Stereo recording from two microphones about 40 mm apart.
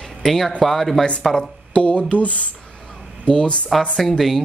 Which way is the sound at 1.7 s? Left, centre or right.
Left.